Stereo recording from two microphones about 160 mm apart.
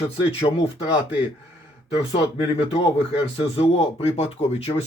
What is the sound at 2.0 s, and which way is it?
Speech, 35° left (ahead or behind).